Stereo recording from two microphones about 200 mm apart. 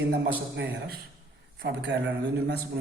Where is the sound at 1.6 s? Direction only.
60° right (ahead or behind).